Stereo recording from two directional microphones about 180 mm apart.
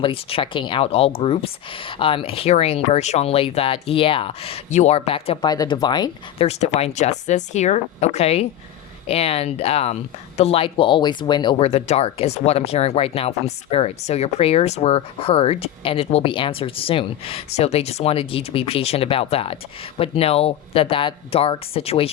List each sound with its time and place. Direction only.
0.0 s speech: 30° left (ahead or behind)
6.5 s speech: 35° left (ahead or behind)